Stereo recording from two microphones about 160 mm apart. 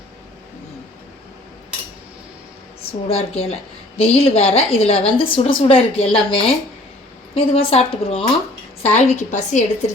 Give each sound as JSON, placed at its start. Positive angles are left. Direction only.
{"t": 3.1, "sound": "a woman's voice", "side_deg": 40}